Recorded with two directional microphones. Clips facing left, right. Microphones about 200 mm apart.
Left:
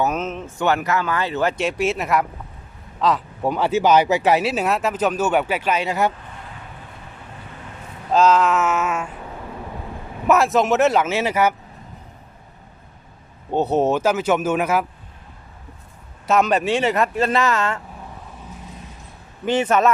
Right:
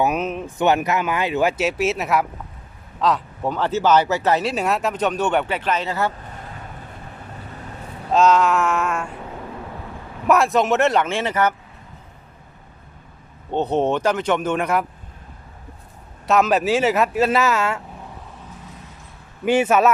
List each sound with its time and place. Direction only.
0.0 s speech: 15° right (ahead or behind)
3.4 s speech: 10° left (ahead or behind)
8.1 s speech: centre (ahead or behind)
10.2 s speech: centre (ahead or behind)
13.5 s speech: 5° left (ahead or behind)
16.2 s speech: centre (ahead or behind)
19.5 s speech: 10° right (ahead or behind)